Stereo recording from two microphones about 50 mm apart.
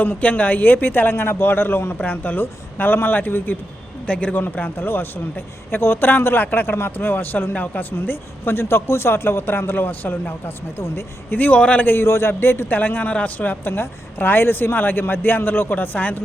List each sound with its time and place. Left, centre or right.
0.0 s speech: left
2.0 s speech: left
4.0 s speech: left
7.5 s speech: left
7.8 s speech: left
11.5 s speech: left
11.9 s a man's voice: left
12.7 s speech: left